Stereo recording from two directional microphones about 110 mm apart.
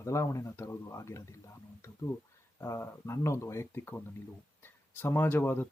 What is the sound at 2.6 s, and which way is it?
A man's voice, 25° left (ahead or behind).